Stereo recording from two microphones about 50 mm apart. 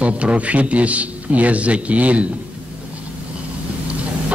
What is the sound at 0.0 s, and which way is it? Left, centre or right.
A man's voice, right.